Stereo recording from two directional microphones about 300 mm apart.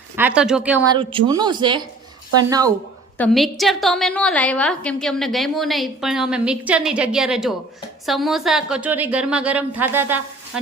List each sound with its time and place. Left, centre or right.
0.2 s a woman's voice: centre
0.9 s speech: centre
3.2 s a woman's voice: centre